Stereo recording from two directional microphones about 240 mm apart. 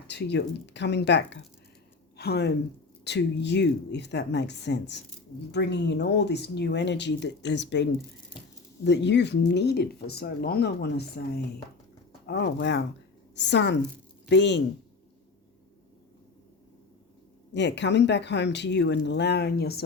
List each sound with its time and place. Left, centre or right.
0.1 s speech: left
12.2 s speech: left
17.5 s speech: left